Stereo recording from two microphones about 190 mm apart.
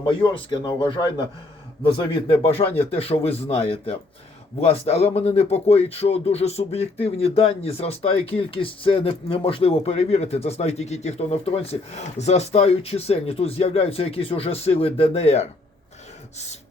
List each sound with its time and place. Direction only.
0.0 s a man's voice: 20° left (ahead or behind)